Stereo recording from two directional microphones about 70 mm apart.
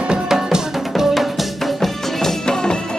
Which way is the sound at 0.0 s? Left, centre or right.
Centre.